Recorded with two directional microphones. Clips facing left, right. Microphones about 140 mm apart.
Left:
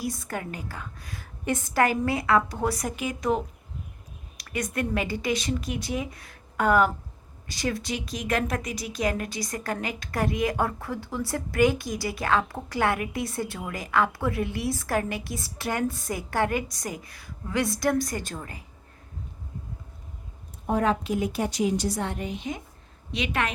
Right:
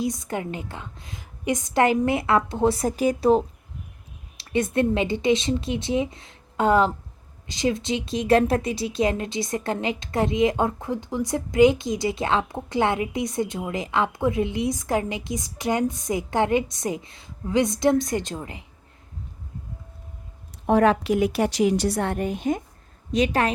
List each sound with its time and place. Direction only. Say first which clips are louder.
0.0 s speech: right 5 dB; 20° right (ahead or behind)
20.7 s a woman's voice: right 6 dB; 80° right; by 22.6 s 50° right (ahead or behind)
23.1 s a woman's voice: right 7 dB; 35° right (ahead or behind)